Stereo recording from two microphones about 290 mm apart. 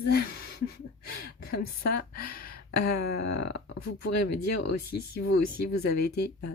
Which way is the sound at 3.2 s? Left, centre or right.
Left.